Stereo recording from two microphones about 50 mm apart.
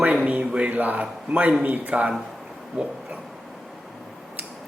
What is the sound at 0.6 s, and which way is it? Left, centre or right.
A man's voice, right.